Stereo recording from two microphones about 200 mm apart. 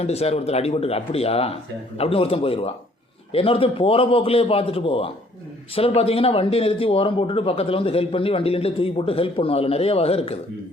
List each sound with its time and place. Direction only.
0.0 s speech: 30° left (ahead or behind)